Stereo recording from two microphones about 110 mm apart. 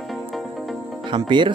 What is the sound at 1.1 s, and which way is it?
Speech, 45° right (ahead or behind).